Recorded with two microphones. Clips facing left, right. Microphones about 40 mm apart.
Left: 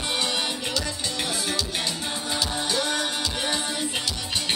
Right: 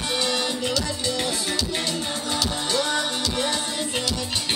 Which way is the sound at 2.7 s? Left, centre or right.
Centre.